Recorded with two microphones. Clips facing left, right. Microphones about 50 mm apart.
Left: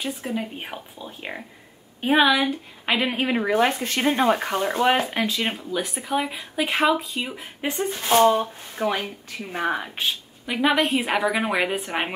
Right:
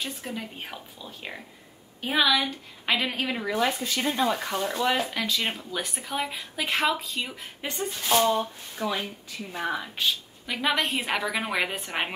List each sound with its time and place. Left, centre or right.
0.0 s a woman's voice: centre; by 3.5 s left
3.5 s speech: left
5.2 s speech: centre
7.8 s speech: left
9.9 s speech: centre